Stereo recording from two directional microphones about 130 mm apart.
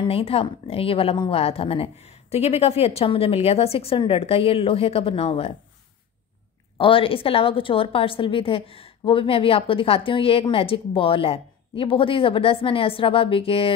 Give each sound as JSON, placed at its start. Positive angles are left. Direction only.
{"t": 0.0, "sound": "a woman's voice", "side_deg": 45}
{"t": 6.8, "sound": "a woman's voice", "side_deg": 45}